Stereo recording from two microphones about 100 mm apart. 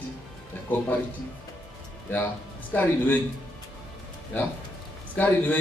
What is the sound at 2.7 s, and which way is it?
Speech, 15° left (ahead or behind).